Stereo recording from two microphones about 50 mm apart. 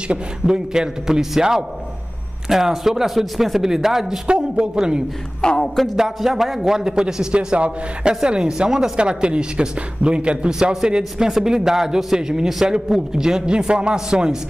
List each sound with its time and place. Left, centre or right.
0.1 s a man's voice: centre
4.3 s a man's voice: centre
5.4 s music: centre
5.8 s a man's voice: centre; by 10.5 s right
10.6 s a man's voice: centre